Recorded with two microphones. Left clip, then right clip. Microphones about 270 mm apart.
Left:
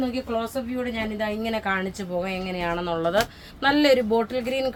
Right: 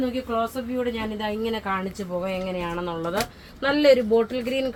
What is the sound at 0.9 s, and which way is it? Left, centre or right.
A woman's voice, centre.